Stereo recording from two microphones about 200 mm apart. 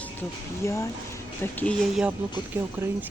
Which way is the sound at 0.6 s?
15° left (ahead or behind).